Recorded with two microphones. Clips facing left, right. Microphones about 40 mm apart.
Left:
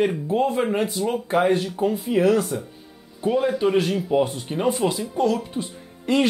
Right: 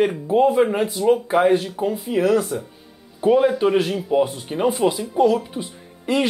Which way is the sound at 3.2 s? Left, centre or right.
Centre.